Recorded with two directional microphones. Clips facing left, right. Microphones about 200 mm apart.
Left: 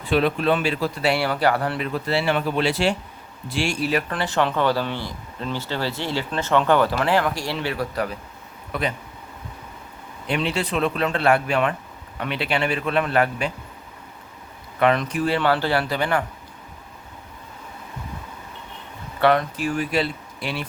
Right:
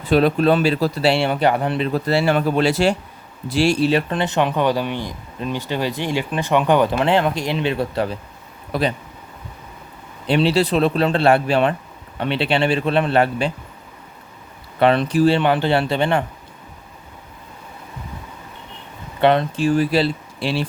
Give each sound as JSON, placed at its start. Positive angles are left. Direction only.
{"t": 0.0, "sound": "speech", "side_deg": -40}
{"t": 1.9, "sound": "speech", "side_deg": -40}
{"t": 10.2, "sound": "speech", "side_deg": -30}
{"t": 14.8, "sound": "speech", "side_deg": -30}
{"t": 15.4, "sound": "speech", "side_deg": -20}
{"t": 19.2, "sound": "speech", "side_deg": -25}